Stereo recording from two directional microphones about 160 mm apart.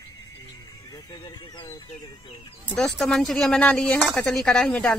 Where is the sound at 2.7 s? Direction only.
5° left (ahead or behind).